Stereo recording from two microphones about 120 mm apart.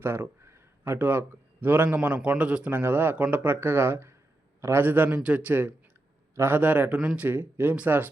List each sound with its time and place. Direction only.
0.0 s a man's voice: 20° right (ahead or behind)